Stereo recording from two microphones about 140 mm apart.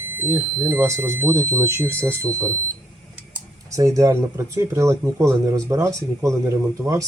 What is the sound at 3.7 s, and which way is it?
Speech, 25° right (ahead or behind).